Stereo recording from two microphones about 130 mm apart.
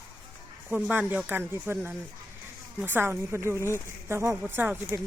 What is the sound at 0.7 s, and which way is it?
Speech, 15° right (ahead or behind).